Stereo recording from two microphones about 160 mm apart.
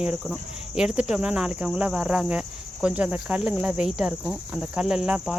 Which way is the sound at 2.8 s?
10° right (ahead or behind).